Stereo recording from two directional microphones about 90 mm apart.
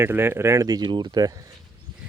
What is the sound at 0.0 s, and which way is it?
Speech, 25° right (ahead or behind).